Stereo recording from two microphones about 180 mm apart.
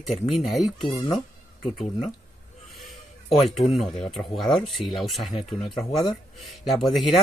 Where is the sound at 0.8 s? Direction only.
25° left (ahead or behind).